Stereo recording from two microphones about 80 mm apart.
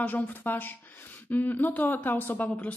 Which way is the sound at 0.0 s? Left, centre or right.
Left.